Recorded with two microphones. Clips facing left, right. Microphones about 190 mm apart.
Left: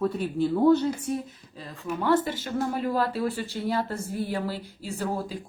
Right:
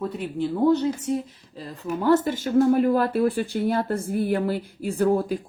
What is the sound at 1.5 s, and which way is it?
Speech, 35° right (ahead or behind).